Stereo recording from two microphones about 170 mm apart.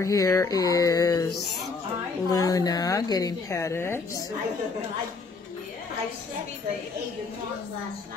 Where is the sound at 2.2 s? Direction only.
20° left (ahead or behind).